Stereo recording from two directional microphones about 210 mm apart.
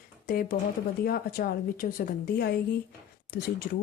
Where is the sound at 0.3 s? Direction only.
45° left (ahead or behind).